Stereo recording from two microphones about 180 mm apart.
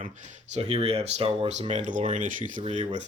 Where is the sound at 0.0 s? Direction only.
40° right (ahead or behind).